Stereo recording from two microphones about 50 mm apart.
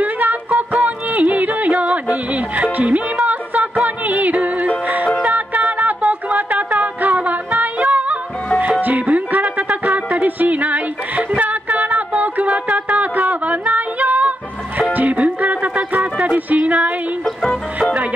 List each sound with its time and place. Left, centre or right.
0.0 s music: right
17.2 s music: centre